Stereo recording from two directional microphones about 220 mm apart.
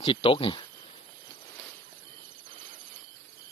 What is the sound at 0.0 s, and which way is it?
Speech, 25° left (ahead or behind).